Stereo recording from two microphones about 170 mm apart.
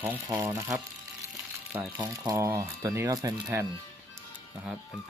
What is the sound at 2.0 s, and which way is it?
Speech, 20° right (ahead or behind).